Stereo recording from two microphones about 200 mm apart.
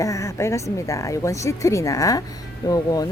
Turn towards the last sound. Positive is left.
turn(degrees=20)  # may be behind; listen again after turning